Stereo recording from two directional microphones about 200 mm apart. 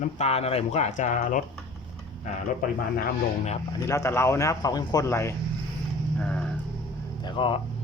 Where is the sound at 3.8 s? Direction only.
15° left (ahead or behind).